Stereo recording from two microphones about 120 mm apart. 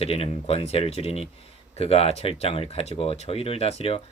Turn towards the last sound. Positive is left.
turn(degrees=55)  # may be behind; listen again after turning